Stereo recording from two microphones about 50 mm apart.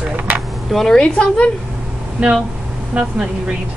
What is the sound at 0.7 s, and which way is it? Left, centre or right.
Speech, centre.